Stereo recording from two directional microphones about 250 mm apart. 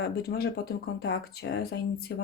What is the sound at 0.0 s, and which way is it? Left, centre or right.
Speech, left.